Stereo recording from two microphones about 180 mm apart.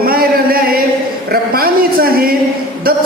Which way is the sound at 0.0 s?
55° right (ahead or behind).